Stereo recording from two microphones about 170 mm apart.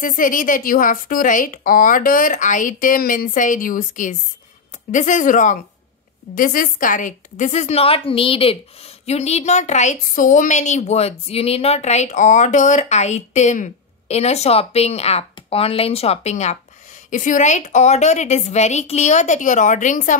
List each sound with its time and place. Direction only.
0.0 s a woman's voice: 50° left (ahead or behind)